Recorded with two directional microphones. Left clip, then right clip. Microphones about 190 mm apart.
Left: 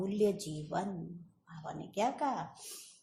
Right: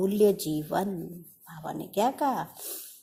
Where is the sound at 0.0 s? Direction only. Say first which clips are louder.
Right 9 dB; 45° right (ahead or behind).